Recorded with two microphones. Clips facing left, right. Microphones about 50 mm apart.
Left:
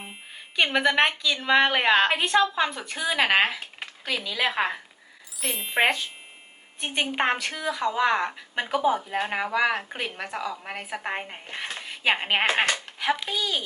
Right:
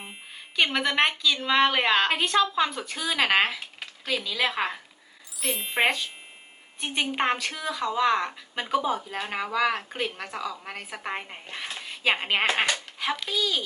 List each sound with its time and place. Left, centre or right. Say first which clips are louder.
0.0 s speech: left 1 dB; centre
2.9 s speech: left 3 dB; centre
5.4 s speech: left 1 dB; centre
7.0 s speech: left 1 dB; centre
9.3 s a child's voice: even; centre